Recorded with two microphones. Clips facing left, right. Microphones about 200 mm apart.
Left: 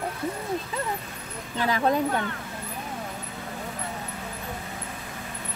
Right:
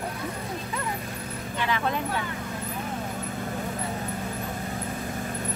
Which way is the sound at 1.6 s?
40° left (ahead or behind).